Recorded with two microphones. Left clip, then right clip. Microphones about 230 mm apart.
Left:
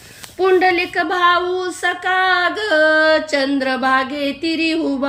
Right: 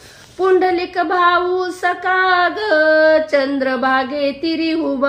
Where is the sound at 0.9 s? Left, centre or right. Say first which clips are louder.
Right 1 dB; centre.